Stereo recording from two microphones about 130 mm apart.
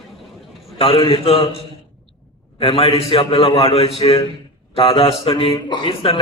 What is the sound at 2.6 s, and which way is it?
A man's voice, 45° left (ahead or behind).